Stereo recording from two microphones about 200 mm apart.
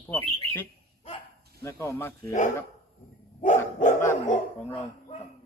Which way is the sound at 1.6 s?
15° left (ahead or behind).